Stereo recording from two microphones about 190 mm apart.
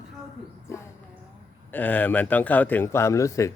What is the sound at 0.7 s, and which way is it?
Speech, 15° left (ahead or behind).